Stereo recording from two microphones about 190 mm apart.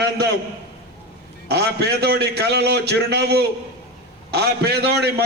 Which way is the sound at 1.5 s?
60° right (ahead or behind).